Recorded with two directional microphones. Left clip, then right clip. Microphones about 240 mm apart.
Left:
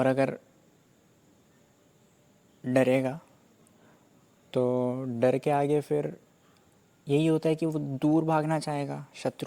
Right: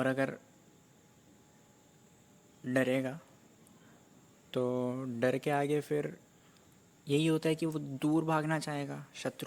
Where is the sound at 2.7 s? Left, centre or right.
Left.